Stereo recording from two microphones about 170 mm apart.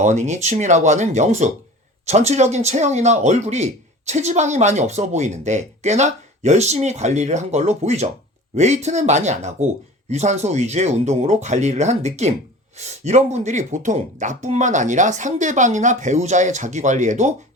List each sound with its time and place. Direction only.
0.0 s speech: 45° right (ahead or behind)